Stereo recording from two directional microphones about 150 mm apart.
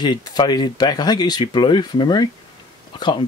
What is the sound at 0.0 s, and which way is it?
Speech, 30° left (ahead or behind).